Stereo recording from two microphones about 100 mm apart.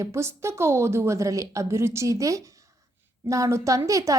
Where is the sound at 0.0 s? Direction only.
30° right (ahead or behind).